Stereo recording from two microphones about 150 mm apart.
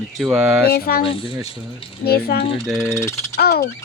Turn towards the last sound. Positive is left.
turn(degrees=90)